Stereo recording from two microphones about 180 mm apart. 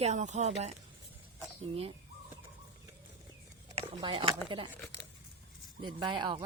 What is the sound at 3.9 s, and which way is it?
Speech, 25° right (ahead or behind).